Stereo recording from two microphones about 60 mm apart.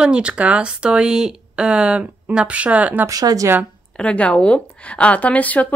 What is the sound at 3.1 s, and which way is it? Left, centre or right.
Speech, right.